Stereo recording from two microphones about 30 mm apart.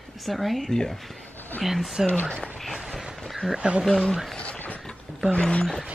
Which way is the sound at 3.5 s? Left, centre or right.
Right.